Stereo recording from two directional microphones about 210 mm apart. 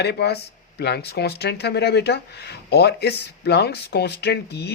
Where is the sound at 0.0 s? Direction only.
50° left (ahead or behind).